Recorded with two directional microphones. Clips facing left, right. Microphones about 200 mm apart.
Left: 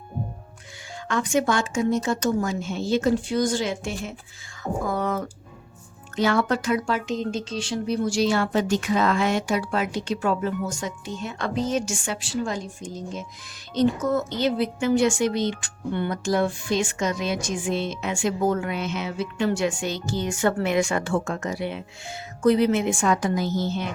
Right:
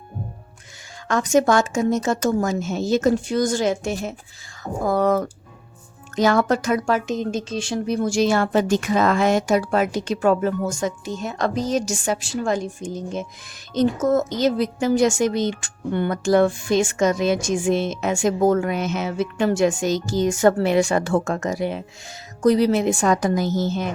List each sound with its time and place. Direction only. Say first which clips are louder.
1.0 s a woman's voice: right 5 dB; 40° right (ahead or behind)